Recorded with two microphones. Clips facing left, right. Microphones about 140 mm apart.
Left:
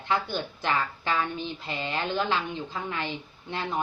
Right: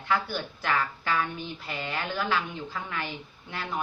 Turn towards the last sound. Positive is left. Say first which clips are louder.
# left 3 dB
turn(degrees=25)  # may be behind; listen again after turning